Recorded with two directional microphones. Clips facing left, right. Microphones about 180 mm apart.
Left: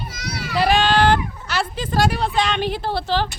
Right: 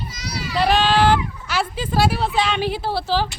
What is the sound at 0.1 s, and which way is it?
Children playing, 55° left (ahead or behind).